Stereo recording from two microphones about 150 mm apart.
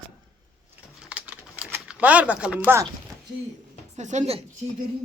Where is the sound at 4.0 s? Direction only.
50° right (ahead or behind).